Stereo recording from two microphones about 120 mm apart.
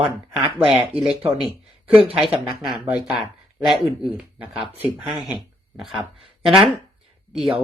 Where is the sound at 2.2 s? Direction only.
Centre (ahead or behind).